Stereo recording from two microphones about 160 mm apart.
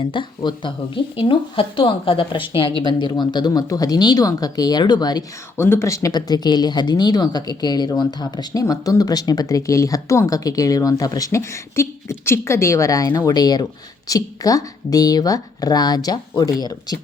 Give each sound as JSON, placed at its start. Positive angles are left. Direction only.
{"t": 0.0, "sound": "speech", "side_deg": 30}